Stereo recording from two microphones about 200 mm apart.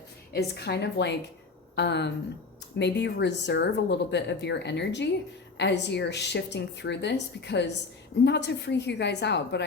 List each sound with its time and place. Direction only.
0.3 s a woman's voice: 55° left (ahead or behind)